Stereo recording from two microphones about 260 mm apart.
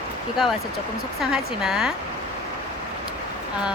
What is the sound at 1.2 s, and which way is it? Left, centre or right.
Speech, centre.